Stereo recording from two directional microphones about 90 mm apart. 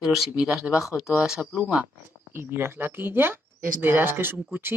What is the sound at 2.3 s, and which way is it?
Speech, 25° right (ahead or behind).